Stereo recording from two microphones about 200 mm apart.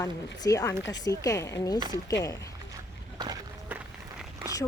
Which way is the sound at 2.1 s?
15° left (ahead or behind).